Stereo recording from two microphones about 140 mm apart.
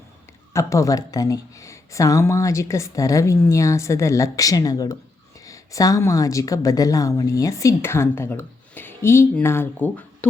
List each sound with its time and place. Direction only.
0.5 s a woman's voice: 25° left (ahead or behind)